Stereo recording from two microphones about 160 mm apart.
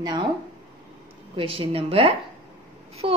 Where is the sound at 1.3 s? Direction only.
35° right (ahead or behind).